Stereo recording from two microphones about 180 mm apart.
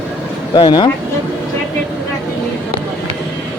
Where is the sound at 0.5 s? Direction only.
25° left (ahead or behind).